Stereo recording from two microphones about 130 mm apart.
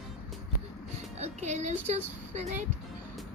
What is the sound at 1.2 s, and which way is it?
Speech, 65° right (ahead or behind).